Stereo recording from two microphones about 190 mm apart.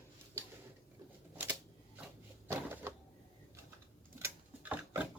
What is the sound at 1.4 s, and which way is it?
Typewriter, 10° right (ahead or behind).